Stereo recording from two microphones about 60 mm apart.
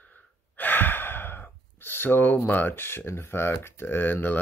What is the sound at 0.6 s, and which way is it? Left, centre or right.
Speech, left.